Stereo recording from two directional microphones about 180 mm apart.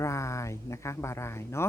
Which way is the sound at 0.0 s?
15° left (ahead or behind).